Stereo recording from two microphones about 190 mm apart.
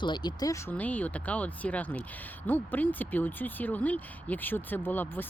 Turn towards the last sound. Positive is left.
turn(degrees=10)  # may be behind; listen again after turning